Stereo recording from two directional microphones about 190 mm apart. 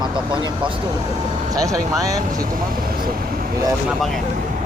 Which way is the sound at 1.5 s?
20° right (ahead or behind).